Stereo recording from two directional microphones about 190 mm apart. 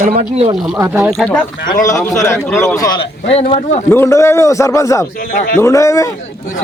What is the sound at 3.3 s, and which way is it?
Speech, 35° left (ahead or behind).